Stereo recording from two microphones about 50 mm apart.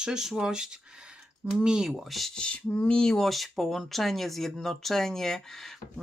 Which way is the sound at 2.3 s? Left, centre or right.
Centre.